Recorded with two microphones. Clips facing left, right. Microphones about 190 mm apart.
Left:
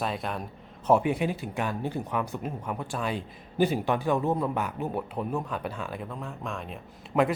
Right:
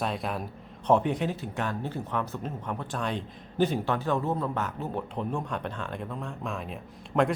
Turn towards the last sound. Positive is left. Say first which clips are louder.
# left 1 dB
turn(degrees=0)  # may be behind; listen again after turning